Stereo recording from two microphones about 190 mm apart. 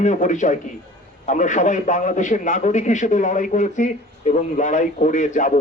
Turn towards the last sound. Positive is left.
turn(degrees=40)  # may be behind; listen again after turning